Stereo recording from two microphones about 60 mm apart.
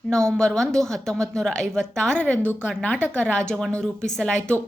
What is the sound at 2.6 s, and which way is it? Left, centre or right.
Speech, left.